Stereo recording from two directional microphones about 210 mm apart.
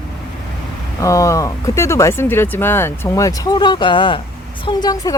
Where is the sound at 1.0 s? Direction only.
15° left (ahead or behind).